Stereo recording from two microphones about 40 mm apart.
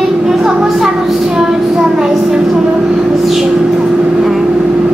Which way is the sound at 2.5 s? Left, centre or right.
Right.